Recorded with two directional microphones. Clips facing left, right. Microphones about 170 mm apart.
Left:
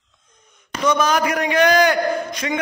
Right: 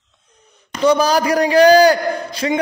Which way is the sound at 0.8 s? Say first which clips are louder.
Right 4 dB; 35° right (ahead or behind).